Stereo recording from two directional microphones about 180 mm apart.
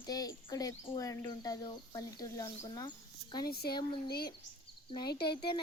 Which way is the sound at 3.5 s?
60° left (ahead or behind).